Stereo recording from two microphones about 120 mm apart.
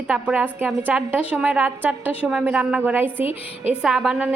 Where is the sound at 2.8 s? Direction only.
15° right (ahead or behind).